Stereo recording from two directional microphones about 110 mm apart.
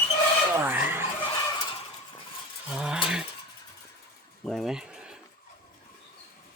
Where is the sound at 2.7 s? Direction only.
5° right (ahead or behind).